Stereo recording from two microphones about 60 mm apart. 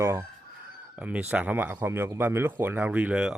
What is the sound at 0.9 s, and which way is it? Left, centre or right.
Speech, right.